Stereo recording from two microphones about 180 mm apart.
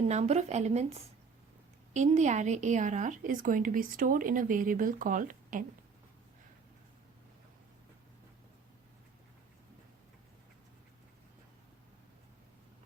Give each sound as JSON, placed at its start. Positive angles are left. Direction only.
{"t": 0.1, "sound": "a woman's voice", "side_deg": -40}